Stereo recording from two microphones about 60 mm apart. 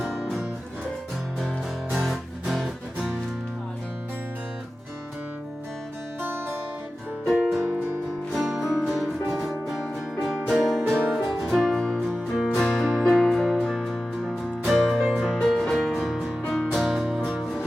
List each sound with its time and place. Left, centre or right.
0.0 s music: centre
1.9 s music: centre
6.2 s guitar: right
7.3 s music: centre
8.3 s music: centre
13.6 s music: centre
15.4 s music: centre